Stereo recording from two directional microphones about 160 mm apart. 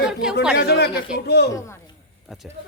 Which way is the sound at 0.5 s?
90° left.